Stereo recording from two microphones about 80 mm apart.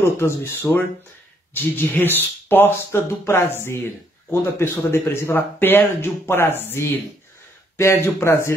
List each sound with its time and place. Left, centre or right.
0.0 s speech: left